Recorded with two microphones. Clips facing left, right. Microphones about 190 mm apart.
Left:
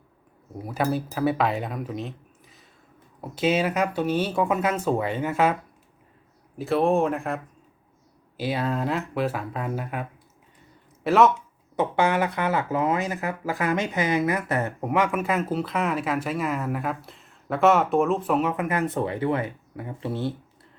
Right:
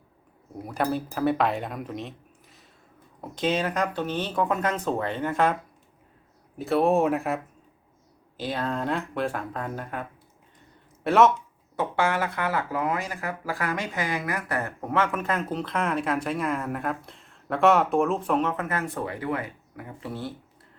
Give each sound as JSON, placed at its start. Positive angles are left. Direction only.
{"t": 0.6, "sound": "speech", "side_deg": 0}
{"t": 6.6, "sound": "speech", "side_deg": 0}
{"t": 8.4, "sound": "speech", "side_deg": 10}
{"t": 11.8, "sound": "speech", "side_deg": 20}